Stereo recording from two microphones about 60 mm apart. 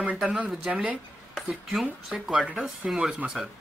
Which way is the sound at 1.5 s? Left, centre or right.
Centre.